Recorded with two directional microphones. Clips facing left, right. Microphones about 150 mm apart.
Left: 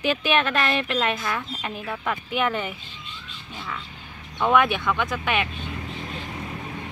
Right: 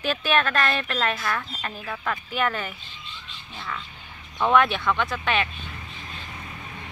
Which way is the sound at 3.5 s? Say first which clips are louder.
Even; 5° left (ahead or behind).